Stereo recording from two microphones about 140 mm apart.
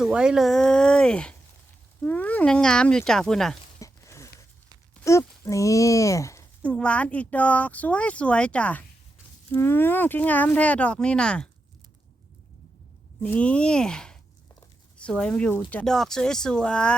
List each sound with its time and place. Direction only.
0.0 s speech: 5° right (ahead or behind)
3.8 s a sound: 25° left (ahead or behind)
5.0 s speech: 20° left (ahead or behind)
6.6 s speech: 10° left (ahead or behind)
13.2 s speech: 10° left (ahead or behind)